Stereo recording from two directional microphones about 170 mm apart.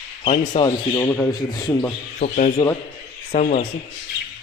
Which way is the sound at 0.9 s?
15° left (ahead or behind).